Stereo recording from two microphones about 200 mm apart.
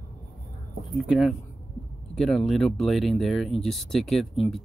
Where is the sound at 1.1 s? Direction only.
Centre (ahead or behind).